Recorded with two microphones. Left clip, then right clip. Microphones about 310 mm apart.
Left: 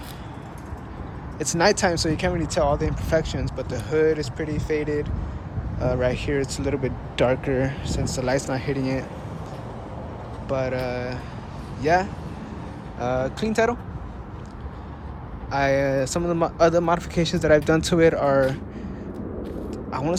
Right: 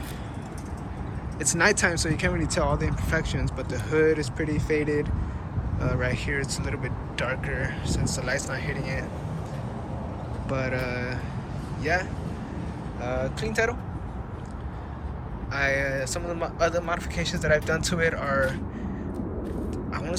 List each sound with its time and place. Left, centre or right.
1.4 s speech: centre
10.5 s speech: centre
15.5 s speech: centre
19.7 s vehicle: centre